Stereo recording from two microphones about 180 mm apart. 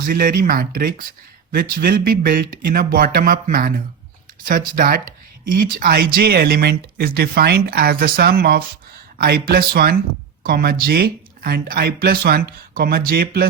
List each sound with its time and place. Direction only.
0.0 s speech: 50° right (ahead or behind)